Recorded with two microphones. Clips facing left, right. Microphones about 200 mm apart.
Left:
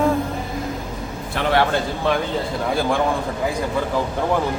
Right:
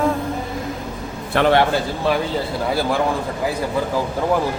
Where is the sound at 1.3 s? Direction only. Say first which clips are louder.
Right 7 dB; 70° right (ahead or behind).